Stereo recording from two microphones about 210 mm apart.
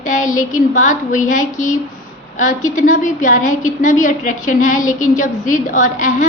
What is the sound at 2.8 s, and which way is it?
A woman's voice, 35° left (ahead or behind).